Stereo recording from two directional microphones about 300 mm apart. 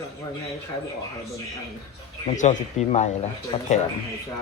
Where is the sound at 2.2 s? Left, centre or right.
Left.